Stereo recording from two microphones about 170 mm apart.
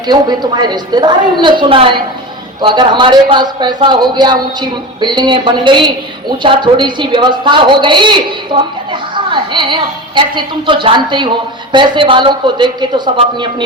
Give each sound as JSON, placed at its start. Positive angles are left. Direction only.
{"t": 0.1, "sound": "a woman's voice", "side_deg": -25}